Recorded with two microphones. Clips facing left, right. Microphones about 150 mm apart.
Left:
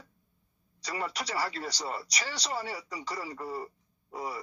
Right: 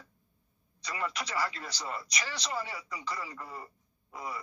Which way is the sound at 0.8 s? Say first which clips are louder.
Left 1 dB; 35° left (ahead or behind).